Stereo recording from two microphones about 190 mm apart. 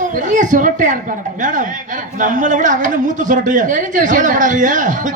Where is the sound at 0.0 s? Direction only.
40° right (ahead or behind).